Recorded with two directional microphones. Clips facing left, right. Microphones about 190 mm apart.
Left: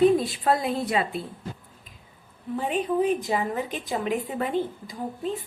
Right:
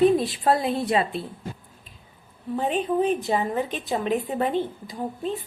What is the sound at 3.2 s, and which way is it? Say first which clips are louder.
A woman's voice: right 2 dB; 25° right (ahead or behind).